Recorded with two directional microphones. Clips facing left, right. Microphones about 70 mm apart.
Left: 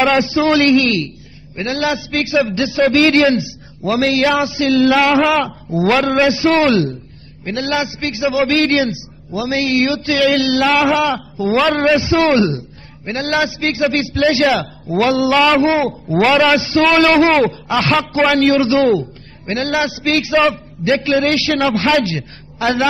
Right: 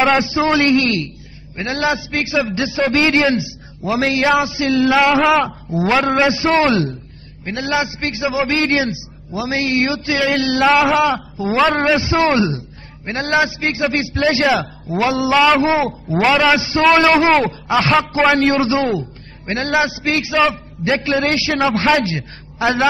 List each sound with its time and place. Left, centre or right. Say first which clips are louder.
0.0 s a man's voice: left 1 dB; centre
7.9 s a man's voice: left 3 dB; right
14.5 s a man's voice: left 1 dB; centre
16.6 s a man's voice: even; centre
18.8 s a man's voice: left 5 dB; centre
19.4 s a man's voice: even; right
20.2 s a man's voice: left 2 dB; centre
21.0 s a man's voice: left 2 dB; right